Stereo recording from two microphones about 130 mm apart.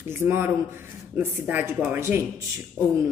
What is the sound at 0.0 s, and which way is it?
Speech, 20° right (ahead or behind).